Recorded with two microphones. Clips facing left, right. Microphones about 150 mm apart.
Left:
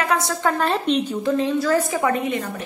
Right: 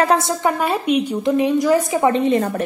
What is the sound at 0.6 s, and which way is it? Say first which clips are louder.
A woman's voice: right 2 dB; 10° right (ahead or behind).